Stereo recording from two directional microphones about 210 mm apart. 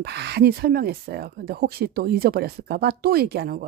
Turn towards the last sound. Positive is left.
turn(degrees=-45)  # may be behind; listen again after turning